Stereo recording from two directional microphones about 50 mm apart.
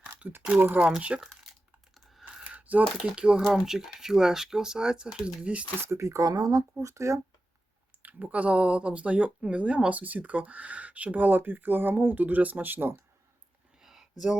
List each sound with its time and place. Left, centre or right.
0.2 s speech: right
0.8 s speech: right
2.4 s coin: right
3.2 s speech: centre
3.5 s speech: centre
5.8 s speech: right
8.0 s speech: right
13.8 s a sound: centre